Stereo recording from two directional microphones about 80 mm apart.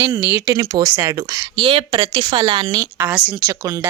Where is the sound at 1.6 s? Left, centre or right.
Right.